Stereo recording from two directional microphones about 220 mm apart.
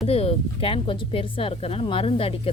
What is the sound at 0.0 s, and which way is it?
Speech, 25° left (ahead or behind).